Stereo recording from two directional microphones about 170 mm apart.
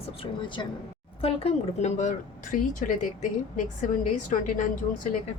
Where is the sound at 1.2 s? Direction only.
35° left (ahead or behind).